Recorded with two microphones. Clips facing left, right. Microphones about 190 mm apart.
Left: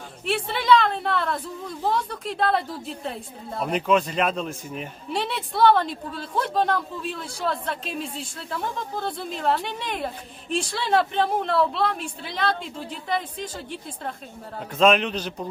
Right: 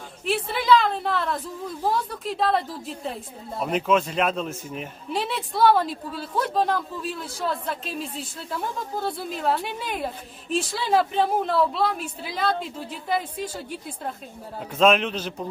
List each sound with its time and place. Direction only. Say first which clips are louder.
0.3 s a woman's voice: even; centre (ahead or behind)